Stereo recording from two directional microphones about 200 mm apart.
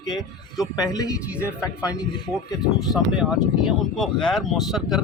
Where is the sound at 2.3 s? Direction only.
Centre (ahead or behind).